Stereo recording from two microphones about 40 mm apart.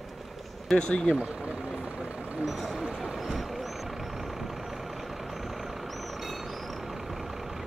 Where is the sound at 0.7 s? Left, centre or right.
Left.